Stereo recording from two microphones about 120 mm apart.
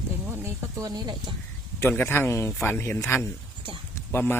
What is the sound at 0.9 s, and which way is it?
Speech, 35° right (ahead or behind).